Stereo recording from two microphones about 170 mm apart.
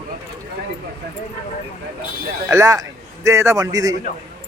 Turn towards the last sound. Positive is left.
turn(degrees=-20)  # may be behind; listen again after turning